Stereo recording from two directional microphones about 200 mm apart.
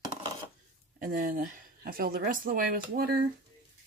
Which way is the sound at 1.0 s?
45° right (ahead or behind).